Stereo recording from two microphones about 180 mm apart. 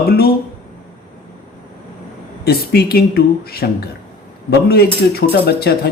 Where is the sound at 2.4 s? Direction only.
60° left (ahead or behind).